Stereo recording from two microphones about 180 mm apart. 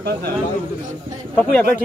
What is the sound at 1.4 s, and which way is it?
Speech, 10° left (ahead or behind).